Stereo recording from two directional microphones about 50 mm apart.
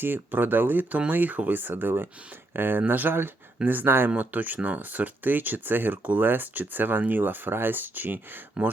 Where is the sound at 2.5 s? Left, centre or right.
Right.